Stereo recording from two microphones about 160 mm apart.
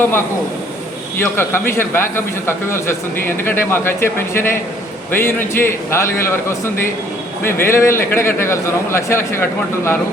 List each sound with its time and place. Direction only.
1.2 s a man's voice: 15° left (ahead or behind)